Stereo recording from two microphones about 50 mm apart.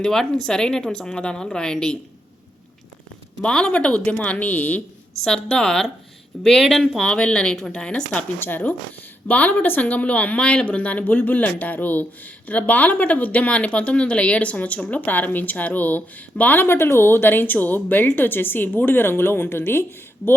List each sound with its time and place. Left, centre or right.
0.0 s a woman's voice: centre
3.4 s speech: centre
5.2 s a woman's voice: centre
7.0 s a woman's voice: centre
8.4 s a woman's voice: left
16.6 s a woman's voice: left